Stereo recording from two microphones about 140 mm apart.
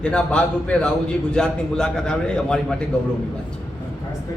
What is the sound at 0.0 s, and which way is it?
A man's voice, 5° left (ahead or behind).